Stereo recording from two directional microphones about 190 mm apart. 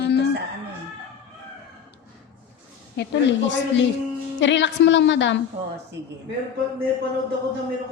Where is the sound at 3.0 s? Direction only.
70° left (ahead or behind).